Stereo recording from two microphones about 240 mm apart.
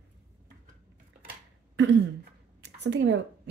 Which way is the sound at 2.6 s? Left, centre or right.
Right.